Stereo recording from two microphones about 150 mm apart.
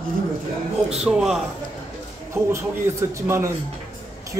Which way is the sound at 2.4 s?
15° right (ahead or behind).